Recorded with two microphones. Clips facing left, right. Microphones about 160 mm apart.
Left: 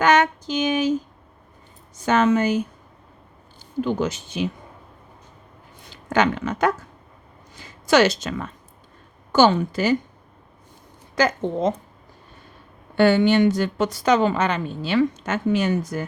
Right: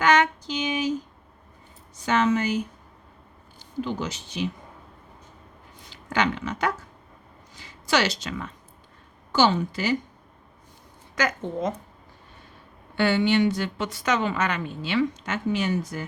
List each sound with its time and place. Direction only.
0.0 s a sound: 45° left (ahead or behind)
2.0 s a woman's voice: 45° left (ahead or behind)
3.6 s speech: 50° left (ahead or behind)
5.9 s a woman's voice: 45° left (ahead or behind)
11.1 s a woman's voice: 30° left (ahead or behind)
13.0 s a woman's voice: 45° left (ahead or behind)